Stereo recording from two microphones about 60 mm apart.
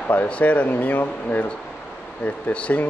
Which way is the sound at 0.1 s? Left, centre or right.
Left.